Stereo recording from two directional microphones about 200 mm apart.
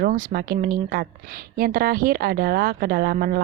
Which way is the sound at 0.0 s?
40° right (ahead or behind).